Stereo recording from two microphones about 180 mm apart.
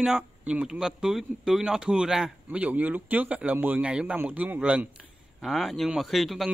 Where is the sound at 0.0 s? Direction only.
5° right (ahead or behind).